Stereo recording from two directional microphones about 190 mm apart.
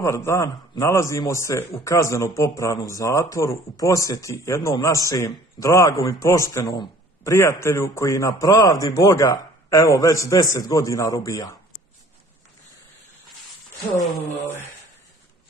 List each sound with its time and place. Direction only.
0.0 s a man's voice: 15° left (ahead or behind)